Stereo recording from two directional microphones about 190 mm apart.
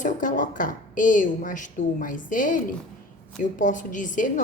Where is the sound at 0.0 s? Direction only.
45° left (ahead or behind).